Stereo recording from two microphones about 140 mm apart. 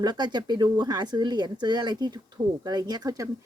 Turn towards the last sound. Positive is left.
turn(degrees=-25)  # may be behind; listen again after turning